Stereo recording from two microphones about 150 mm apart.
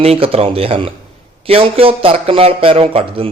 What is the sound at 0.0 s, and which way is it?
Speech, 40° right (ahead or behind).